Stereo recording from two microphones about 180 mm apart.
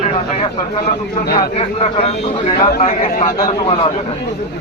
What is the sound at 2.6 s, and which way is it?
Speech, 50° left (ahead or behind).